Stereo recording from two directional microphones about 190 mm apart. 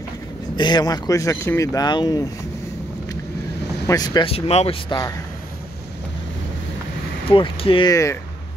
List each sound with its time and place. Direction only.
0.6 s speech: 20° left (ahead or behind)
3.8 s speech: 20° left (ahead or behind)
7.2 s speech: 30° left (ahead or behind)